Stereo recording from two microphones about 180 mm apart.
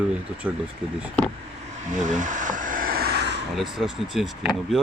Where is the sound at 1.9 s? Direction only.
45° right (ahead or behind); by 3.4 s 65° right (ahead or behind).